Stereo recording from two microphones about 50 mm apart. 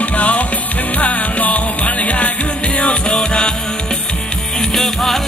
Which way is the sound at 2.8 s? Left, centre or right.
Centre.